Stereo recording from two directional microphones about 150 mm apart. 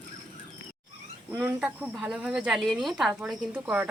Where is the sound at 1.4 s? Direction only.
10° right (ahead or behind).